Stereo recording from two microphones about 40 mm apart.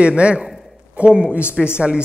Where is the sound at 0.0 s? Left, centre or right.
Right.